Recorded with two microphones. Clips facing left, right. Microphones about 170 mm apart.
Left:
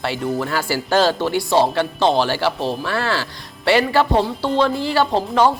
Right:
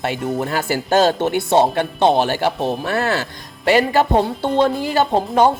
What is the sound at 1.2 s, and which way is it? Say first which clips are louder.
Speech: right 1 dB; 25° right (ahead or behind).